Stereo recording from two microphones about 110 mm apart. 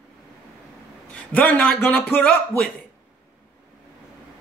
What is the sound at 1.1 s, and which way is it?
Speech, 15° left (ahead or behind).